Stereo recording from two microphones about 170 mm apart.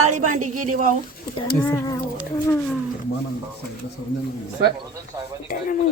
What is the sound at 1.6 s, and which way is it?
Speech, 15° left (ahead or behind).